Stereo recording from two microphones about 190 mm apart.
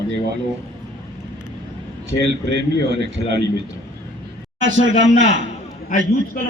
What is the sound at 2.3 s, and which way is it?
Speech, 60° right (ahead or behind).